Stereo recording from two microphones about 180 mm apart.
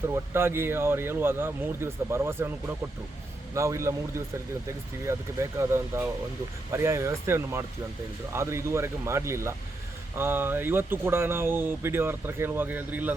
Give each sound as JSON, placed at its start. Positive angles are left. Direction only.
{"t": 0.1, "sound": "speech", "side_deg": -15}
{"t": 3.5, "sound": "speech", "side_deg": -15}
{"t": 5.0, "sound": "speech", "side_deg": -15}